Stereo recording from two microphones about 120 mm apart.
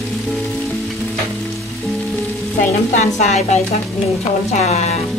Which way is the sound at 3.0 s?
70° left (ahead or behind).